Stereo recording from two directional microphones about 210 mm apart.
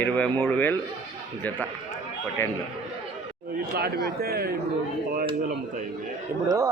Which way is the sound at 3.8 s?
50° right (ahead or behind).